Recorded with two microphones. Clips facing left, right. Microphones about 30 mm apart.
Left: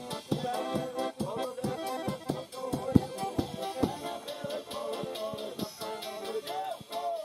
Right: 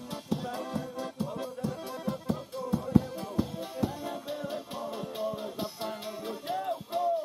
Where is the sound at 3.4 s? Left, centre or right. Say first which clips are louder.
Right 1 dB; left.